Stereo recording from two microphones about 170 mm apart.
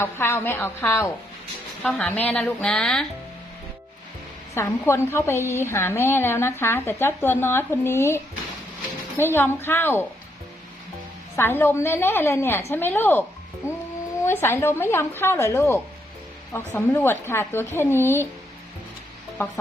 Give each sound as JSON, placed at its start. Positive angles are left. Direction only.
{"t": 0.0, "sound": "a woman's voice", "side_deg": 15}
{"t": 4.5, "sound": "a woman's voice", "side_deg": 15}
{"t": 11.3, "sound": "a woman's voice", "side_deg": 10}
{"t": 14.3, "sound": "a woman's voice", "side_deg": 15}
{"t": 19.4, "sound": "a woman's voice", "side_deg": 15}